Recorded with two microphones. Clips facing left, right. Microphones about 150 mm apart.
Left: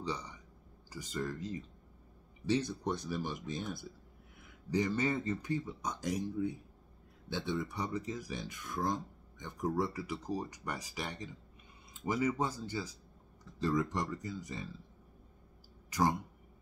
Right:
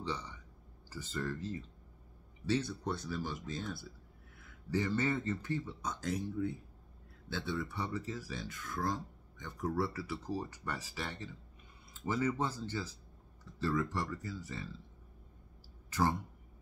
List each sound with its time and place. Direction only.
0.0 s a sound: 15° left (ahead or behind)
0.8 s speech: 15° left (ahead or behind)
15.9 s speech: 15° left (ahead or behind)